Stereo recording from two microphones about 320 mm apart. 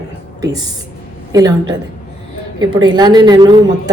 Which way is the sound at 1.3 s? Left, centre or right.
Centre.